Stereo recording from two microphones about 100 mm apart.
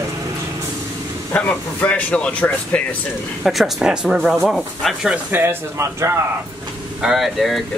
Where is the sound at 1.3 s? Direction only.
15° left (ahead or behind).